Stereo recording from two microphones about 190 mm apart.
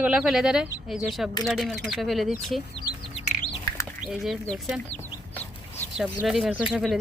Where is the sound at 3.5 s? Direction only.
20° left (ahead or behind).